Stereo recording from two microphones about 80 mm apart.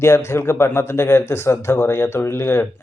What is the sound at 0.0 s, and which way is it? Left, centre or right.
Speech, left.